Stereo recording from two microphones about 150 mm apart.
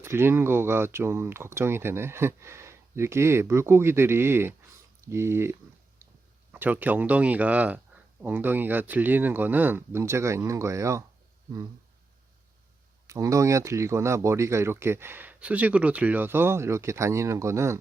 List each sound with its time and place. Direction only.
0.0 s speech: 15° right (ahead or behind)
6.0 s a sound: 15° right (ahead or behind)
6.5 s speech: 10° right (ahead or behind)
13.1 s speech: 20° right (ahead or behind)